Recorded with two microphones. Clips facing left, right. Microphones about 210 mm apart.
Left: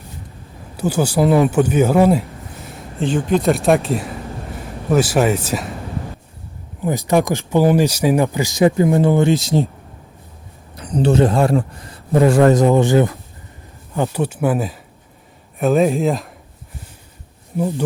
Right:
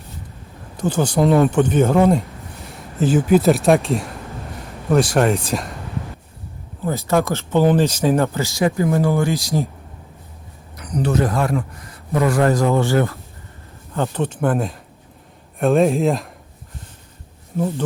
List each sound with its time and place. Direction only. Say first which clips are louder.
0.8 s a man's voice: left 1 dB; 10° left (ahead or behind)
6.8 s speech: left 2 dB; 15° left (ahead or behind)
10.8 s a man's voice: left 5 dB; 30° left (ahead or behind); by 16.3 s centre (ahead or behind)
17.6 s speech: left 1 dB; 15° left (ahead or behind)